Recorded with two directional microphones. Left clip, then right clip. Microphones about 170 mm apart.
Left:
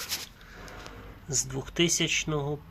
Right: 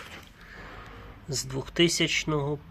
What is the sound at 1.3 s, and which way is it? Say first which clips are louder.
Speech: left 1 dB; 10° right (ahead or behind).